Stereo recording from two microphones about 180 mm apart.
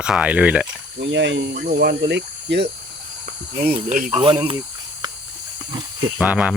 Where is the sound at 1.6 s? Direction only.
65° right (ahead or behind).